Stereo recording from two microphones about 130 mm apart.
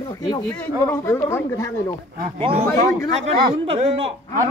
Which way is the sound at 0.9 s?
20° left (ahead or behind).